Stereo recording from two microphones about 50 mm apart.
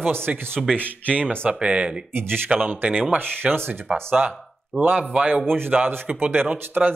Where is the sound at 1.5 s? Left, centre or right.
Centre.